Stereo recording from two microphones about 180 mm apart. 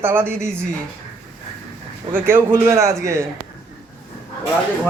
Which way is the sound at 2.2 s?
10° right (ahead or behind).